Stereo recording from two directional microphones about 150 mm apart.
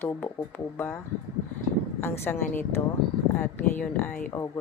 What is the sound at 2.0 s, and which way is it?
Speech, 15° left (ahead or behind).